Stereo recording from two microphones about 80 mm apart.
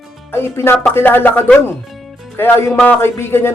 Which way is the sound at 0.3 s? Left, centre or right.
Left.